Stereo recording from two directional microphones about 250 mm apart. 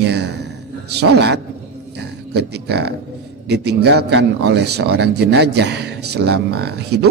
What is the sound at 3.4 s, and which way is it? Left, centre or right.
A man's voice, right.